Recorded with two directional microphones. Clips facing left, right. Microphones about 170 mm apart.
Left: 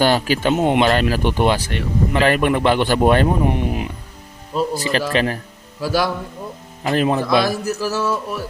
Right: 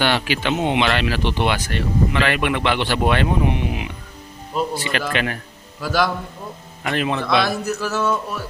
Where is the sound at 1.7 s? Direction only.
15° left (ahead or behind).